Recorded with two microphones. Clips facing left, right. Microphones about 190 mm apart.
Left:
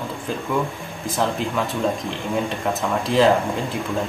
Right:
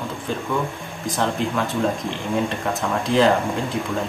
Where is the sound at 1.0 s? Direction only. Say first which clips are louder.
Even; centre (ahead or behind).